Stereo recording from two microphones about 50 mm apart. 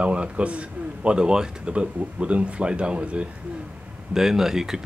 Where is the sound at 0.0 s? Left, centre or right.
Right.